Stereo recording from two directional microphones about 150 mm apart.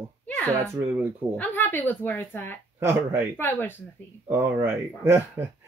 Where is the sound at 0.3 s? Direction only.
10° left (ahead or behind).